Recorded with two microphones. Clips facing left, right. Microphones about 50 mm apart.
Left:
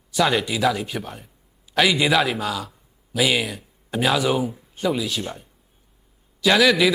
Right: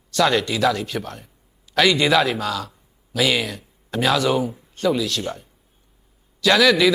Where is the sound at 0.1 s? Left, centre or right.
Centre.